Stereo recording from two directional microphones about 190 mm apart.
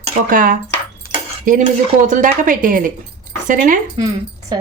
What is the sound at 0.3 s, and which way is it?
Speech, 45° right (ahead or behind).